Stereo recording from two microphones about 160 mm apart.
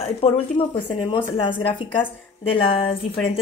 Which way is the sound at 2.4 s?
35° left (ahead or behind).